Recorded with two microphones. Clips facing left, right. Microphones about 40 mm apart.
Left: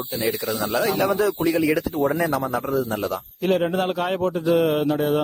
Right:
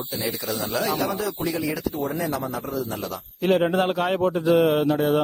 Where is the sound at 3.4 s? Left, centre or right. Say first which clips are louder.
Right 1 dB; centre.